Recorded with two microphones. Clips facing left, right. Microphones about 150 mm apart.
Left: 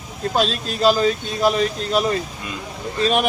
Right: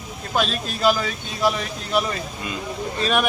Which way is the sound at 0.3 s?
35° left (ahead or behind).